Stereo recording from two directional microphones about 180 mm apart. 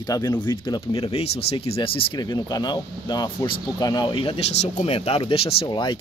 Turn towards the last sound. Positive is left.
turn(degrees=25)  # may be behind; listen again after turning